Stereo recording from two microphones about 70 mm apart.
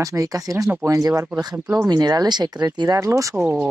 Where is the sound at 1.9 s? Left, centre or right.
Right.